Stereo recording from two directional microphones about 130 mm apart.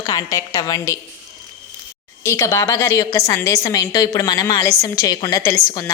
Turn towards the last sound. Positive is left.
turn(degrees=25)  # may be behind; listen again after turning